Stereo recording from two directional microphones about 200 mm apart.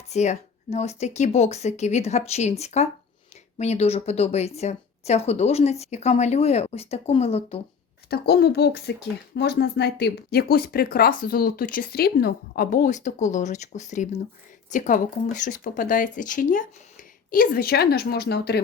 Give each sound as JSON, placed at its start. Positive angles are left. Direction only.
{"t": 0.1, "sound": "speech", "side_deg": 35}
{"t": 8.1, "sound": "speech", "side_deg": 50}